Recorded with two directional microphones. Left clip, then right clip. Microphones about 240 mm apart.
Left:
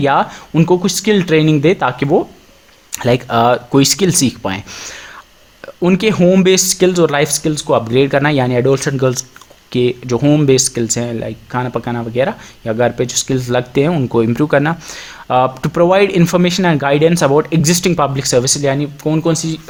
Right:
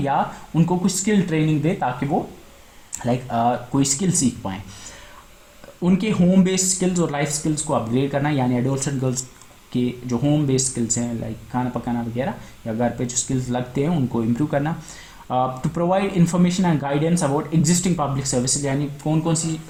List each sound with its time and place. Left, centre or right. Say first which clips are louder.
0.0 s speech: left 8 dB; left
2.9 s speech: left 10 dB; left